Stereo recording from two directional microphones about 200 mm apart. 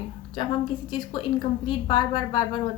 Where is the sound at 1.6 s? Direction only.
25° left (ahead or behind).